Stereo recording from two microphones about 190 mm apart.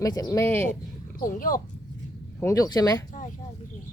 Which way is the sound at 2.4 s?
15° left (ahead or behind).